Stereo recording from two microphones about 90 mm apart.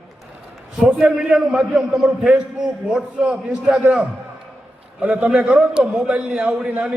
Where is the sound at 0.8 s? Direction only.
15° right (ahead or behind).